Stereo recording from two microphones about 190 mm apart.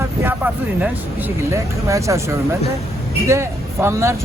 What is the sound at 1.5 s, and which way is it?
Speech, 15° right (ahead or behind).